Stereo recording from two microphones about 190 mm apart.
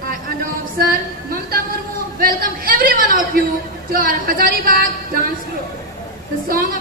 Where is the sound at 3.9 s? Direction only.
50° right (ahead or behind).